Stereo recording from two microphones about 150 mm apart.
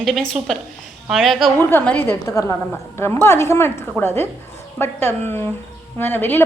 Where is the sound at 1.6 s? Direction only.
15° left (ahead or behind).